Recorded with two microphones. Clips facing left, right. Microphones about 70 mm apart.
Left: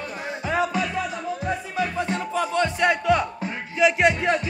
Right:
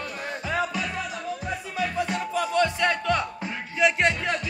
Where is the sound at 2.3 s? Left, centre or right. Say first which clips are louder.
Even; left.